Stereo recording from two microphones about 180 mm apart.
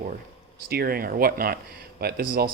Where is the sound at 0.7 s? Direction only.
60° right (ahead or behind).